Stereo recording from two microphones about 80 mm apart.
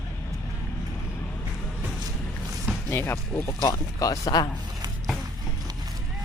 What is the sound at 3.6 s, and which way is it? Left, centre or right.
Speech, left.